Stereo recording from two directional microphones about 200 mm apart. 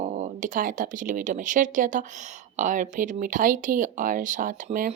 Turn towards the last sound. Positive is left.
turn(degrees=-40)  # may be behind; listen again after turning